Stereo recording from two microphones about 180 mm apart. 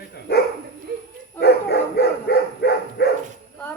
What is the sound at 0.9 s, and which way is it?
Bow-wow, 65° right (ahead or behind).